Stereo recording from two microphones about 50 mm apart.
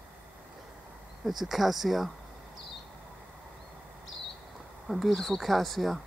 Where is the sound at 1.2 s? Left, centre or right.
Centre.